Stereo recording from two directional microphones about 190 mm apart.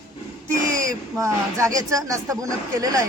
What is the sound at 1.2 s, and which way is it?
A man's voice, 15° right (ahead or behind).